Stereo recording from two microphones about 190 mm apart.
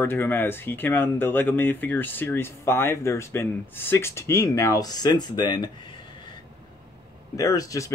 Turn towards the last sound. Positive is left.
turn(degrees=15)  # may be behind; listen again after turning